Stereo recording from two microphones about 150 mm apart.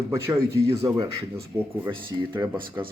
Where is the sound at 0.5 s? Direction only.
20° right (ahead or behind).